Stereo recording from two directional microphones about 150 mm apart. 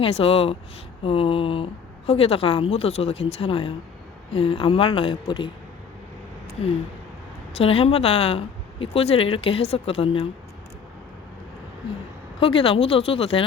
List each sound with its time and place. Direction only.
0.0 s a woman's voice: 40° left (ahead or behind)
7.6 s a woman's voice: 40° left (ahead or behind)
12.4 s a woman's voice: 35° left (ahead or behind)